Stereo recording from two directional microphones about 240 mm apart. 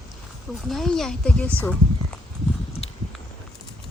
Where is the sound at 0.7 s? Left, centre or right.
Centre.